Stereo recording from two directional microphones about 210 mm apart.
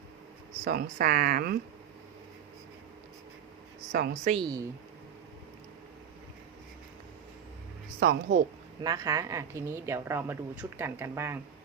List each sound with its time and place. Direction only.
0.6 s speech: 45° right (ahead or behind)
3.9 s speech: 45° right (ahead or behind)
4.2 s a woman's voice: 30° right (ahead or behind)
7.9 s speech: 55° right (ahead or behind)
8.8 s a woman's voice: 15° right (ahead or behind)